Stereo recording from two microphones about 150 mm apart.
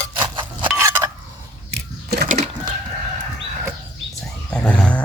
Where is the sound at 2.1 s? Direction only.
90° right.